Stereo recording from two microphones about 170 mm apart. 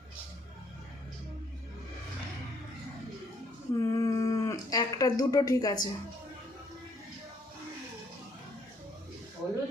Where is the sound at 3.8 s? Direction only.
20° left (ahead or behind).